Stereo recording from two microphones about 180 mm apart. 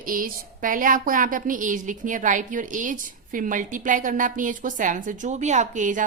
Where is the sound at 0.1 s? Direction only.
50° right (ahead or behind).